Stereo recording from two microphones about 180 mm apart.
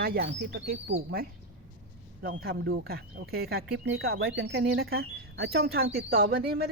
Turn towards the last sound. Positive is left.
turn(degrees=-55)  # may be behind; listen again after turning